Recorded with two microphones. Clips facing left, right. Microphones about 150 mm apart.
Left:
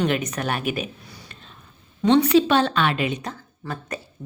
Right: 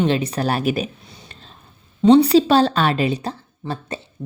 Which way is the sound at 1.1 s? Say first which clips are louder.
Right 1 dB; 30° right (ahead or behind).